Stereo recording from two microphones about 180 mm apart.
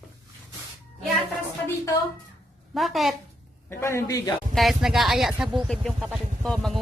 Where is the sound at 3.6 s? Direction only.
15° left (ahead or behind).